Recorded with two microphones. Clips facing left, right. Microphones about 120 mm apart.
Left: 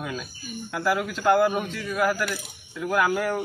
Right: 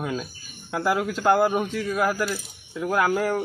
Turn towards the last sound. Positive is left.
turn(degrees=-25)  # may be behind; listen again after turning